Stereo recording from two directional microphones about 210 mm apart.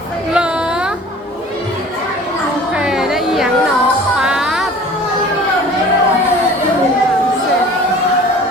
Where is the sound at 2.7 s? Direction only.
5° right (ahead or behind).